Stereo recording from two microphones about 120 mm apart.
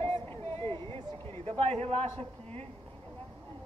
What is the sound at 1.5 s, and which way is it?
Speech, 60° right (ahead or behind).